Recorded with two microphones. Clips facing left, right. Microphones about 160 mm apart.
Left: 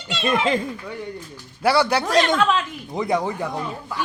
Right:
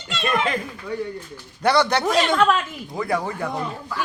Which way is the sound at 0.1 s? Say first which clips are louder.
Left 1 dB; centre (ahead or behind).